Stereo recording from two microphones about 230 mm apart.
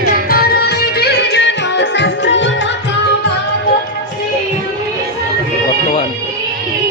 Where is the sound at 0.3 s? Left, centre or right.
Left.